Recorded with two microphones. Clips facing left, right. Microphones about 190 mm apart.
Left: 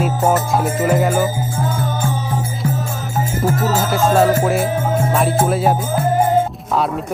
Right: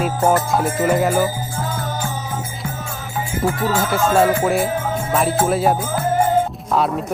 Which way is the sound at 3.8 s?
Centre (ahead or behind).